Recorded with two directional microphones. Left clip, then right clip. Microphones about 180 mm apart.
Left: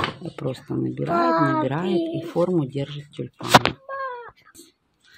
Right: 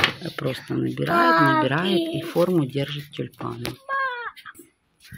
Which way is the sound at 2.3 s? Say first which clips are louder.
Right 2 dB; 5° right (ahead or behind).